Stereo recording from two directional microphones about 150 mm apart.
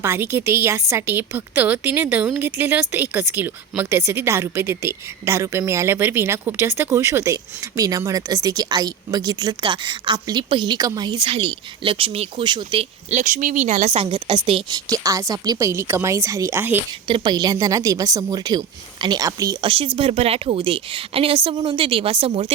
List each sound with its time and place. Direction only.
0.0 s a woman's voice: 15° right (ahead or behind); by 14.8 s 35° right (ahead or behind)
14.8 s a woman's voice: 20° right (ahead or behind)
17.1 s a woman's voice: 30° right (ahead or behind)
20.0 s speech: 40° right (ahead or behind)